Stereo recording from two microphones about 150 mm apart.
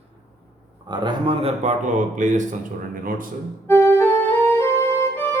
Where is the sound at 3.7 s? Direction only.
15° left (ahead or behind).